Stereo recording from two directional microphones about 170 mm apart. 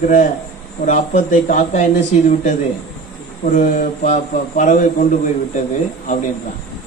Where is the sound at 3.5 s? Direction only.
50° left (ahead or behind).